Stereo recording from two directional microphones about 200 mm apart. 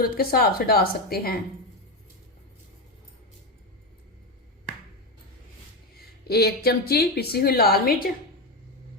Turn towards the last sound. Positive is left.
turn(degrees=50)  # may be behind; listen again after turning